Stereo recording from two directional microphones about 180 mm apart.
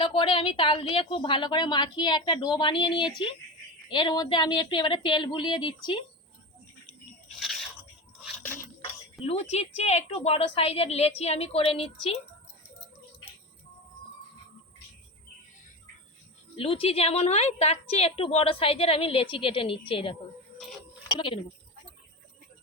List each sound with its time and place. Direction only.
0.0 s a woman's voice: 30° left (ahead or behind)
8.8 s a woman's voice: 35° left (ahead or behind)
16.6 s a woman's voice: 30° left (ahead or behind)